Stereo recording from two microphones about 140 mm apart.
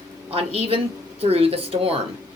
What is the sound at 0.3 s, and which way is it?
Speech, 45° right (ahead or behind).